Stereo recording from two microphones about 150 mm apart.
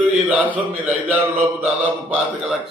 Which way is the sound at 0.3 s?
10° right (ahead or behind).